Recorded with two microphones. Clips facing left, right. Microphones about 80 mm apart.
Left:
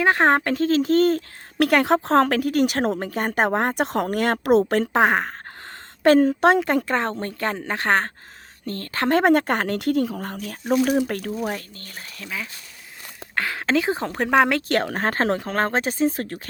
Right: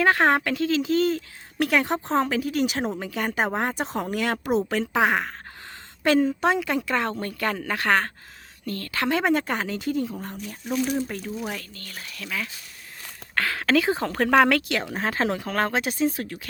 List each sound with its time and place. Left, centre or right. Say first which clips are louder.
0.0 s speech: left 2 dB; left
3.0 s speech: left 4 dB; left
3.8 s speech: left 5 dB; left
6.1 s speech: left 5 dB; left
6.6 s speech: left 3 dB; left
10.3 s speech: left 7 dB; left
11.4 s speech: left 4 dB; left
13.3 s speech: even; left
14.7 s speech: left 5 dB; left